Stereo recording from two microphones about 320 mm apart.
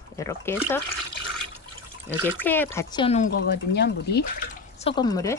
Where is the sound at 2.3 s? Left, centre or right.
Centre; by 4.3 s left.